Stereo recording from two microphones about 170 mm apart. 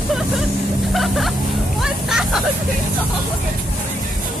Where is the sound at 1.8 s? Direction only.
5° right (ahead or behind).